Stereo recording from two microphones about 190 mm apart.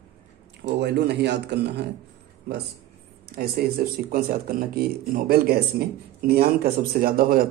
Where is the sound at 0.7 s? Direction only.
60° right (ahead or behind).